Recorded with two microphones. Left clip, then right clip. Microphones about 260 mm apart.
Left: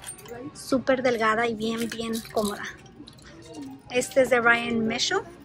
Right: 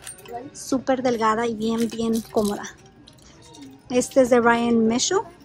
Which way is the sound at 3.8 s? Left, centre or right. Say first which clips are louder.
Right 4 dB; centre.